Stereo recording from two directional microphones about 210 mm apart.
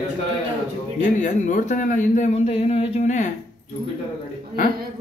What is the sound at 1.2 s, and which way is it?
A man's voice, 35° left (ahead or behind).